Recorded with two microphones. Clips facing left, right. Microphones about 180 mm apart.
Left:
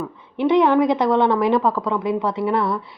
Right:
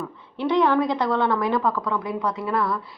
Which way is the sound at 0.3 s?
20° left (ahead or behind).